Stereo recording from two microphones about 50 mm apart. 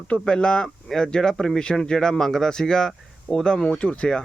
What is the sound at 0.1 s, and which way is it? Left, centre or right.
Speech, centre.